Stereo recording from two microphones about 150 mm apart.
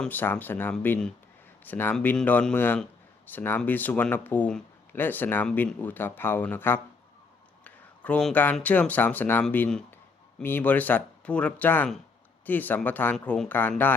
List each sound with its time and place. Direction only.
0.0 s speech: 10° left (ahead or behind)
7.6 s a sound: 10° left (ahead or behind)
8.5 s speech: 10° left (ahead or behind)